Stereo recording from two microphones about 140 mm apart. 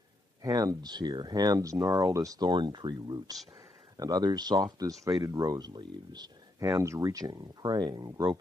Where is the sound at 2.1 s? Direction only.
25° right (ahead or behind).